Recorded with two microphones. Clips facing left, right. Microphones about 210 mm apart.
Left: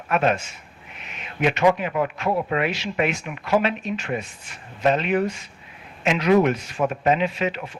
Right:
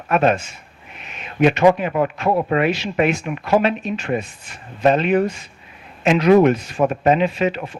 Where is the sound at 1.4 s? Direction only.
40° right (ahead or behind).